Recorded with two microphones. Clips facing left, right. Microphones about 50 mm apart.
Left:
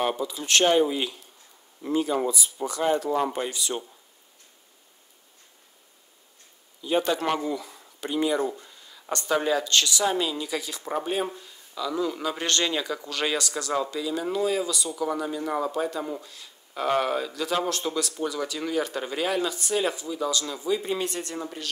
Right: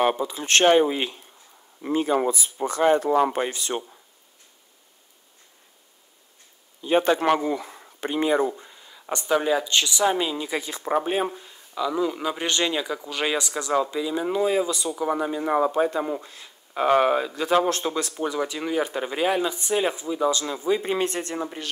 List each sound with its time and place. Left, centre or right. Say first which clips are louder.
0.0 s speech: right 4 dB; right
6.8 s speech: right 4 dB; right
8.5 s speech: right 2 dB; right